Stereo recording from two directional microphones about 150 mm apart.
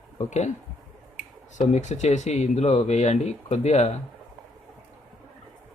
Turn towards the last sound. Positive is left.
turn(degrees=50)  # may be behind; listen again after turning